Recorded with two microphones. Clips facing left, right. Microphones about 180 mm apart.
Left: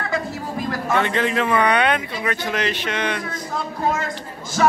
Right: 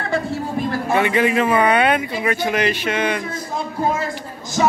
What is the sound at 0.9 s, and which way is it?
Speech, 10° right (ahead or behind).